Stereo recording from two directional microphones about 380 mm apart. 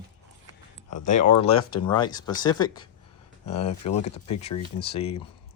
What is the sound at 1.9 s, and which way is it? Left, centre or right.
Speech, centre.